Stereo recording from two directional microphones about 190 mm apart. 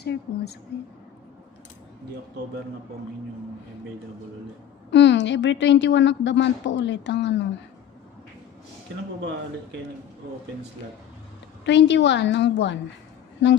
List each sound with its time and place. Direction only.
0.0 s speech: 60° left (ahead or behind)
4.9 s speech: 70° left (ahead or behind)
11.6 s speech: 70° left (ahead or behind)